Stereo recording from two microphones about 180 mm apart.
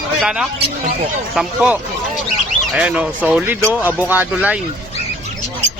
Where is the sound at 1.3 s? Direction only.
5° right (ahead or behind).